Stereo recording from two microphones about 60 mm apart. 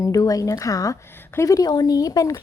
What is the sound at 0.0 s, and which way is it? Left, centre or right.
Speech, left.